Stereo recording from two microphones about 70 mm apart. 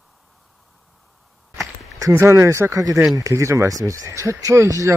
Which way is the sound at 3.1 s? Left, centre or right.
Right.